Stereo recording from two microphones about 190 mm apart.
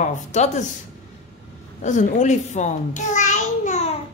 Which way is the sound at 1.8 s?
40° left (ahead or behind).